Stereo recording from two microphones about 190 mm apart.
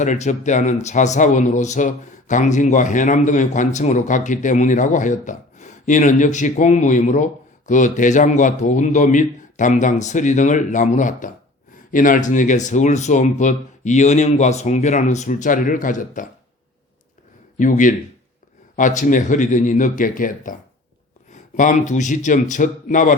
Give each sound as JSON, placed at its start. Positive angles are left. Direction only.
{"t": 0.0, "sound": "a man's voice", "side_deg": 40}
{"t": 17.6, "sound": "a man's voice", "side_deg": 45}